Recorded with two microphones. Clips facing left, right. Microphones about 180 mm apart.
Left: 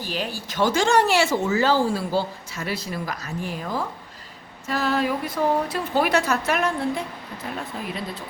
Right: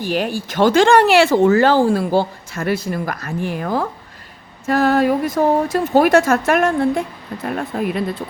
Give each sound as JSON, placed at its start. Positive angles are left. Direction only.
{"t": 0.0, "sound": "speech", "side_deg": -55}
{"t": 4.6, "sound": "speech", "side_deg": -50}